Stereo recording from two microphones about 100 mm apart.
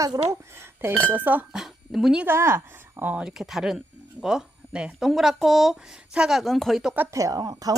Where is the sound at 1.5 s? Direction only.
Centre (ahead or behind).